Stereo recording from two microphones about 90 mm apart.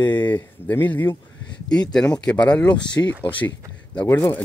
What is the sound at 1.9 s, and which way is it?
Speech, 10° left (ahead or behind).